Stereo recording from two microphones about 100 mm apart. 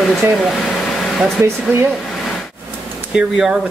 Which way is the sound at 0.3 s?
Centre (ahead or behind).